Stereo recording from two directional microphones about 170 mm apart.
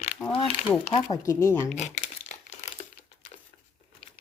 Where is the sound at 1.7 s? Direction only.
45° left (ahead or behind).